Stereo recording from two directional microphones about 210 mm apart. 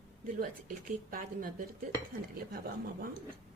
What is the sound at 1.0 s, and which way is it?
Speech, 40° right (ahead or behind).